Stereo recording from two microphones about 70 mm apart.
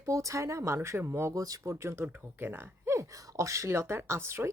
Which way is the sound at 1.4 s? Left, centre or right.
Right.